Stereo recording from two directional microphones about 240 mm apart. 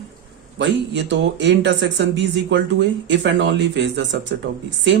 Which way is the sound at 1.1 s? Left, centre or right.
Right.